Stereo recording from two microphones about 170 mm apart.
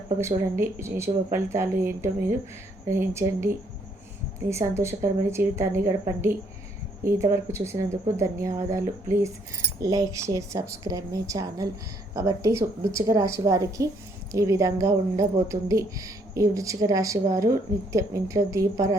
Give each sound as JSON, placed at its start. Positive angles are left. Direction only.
{"t": 0.2, "sound": "a woman's voice", "side_deg": -15}
{"t": 4.4, "sound": "a woman's voice", "side_deg": -15}